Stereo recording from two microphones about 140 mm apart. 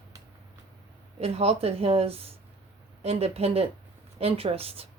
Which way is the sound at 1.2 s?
45° right (ahead or behind).